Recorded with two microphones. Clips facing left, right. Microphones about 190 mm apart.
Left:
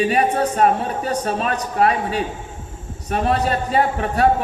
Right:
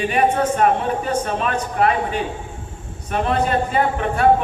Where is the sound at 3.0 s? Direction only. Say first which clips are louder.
Even; 40° left (ahead or behind).